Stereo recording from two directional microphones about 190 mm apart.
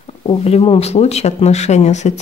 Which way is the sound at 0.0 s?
30° left (ahead or behind).